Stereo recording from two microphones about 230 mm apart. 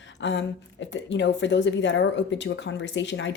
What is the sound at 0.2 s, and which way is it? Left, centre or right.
A woman's voice, left.